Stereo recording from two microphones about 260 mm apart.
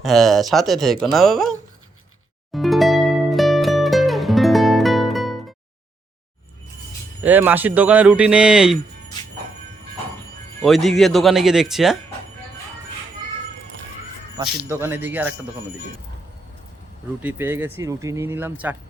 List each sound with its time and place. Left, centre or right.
0.0 s speech: centre
2.5 s music: centre
7.2 s speech: centre
10.6 s speech: centre
14.6 s speech: centre
17.2 s speech: centre